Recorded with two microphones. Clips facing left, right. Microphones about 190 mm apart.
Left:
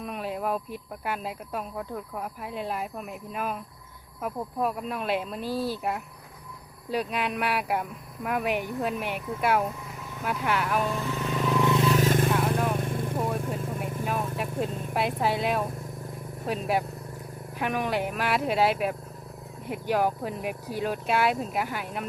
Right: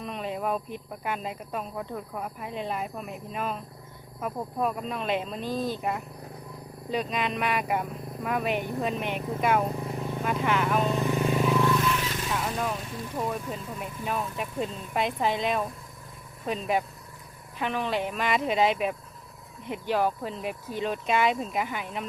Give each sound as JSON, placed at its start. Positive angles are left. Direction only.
{"t": 0.0, "sound": "speech", "side_deg": 5}
{"t": 6.9, "sound": "speech", "side_deg": 10}
{"t": 9.7, "sound": "vehicle", "side_deg": -35}
{"t": 10.4, "sound": "speech", "side_deg": 5}
{"t": 10.8, "sound": "vehicle", "side_deg": -20}
{"t": 11.6, "sound": "vehicle", "side_deg": 20}
{"t": 11.9, "sound": "vehicle", "side_deg": 45}
{"t": 14.1, "sound": "speech", "side_deg": 5}